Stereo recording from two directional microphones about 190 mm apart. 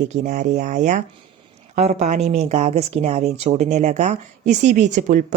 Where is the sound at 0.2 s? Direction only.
40° right (ahead or behind).